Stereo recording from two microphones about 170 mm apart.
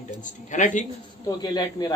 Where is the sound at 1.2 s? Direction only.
25° left (ahead or behind).